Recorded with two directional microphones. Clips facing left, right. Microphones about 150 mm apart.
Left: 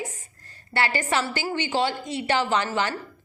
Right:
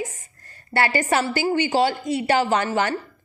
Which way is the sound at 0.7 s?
45° right (ahead or behind).